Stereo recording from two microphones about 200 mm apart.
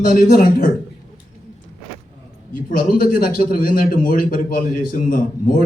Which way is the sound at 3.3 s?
45° left (ahead or behind).